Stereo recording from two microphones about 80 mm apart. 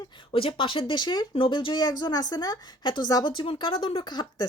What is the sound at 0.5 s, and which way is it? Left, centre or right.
Speech, left.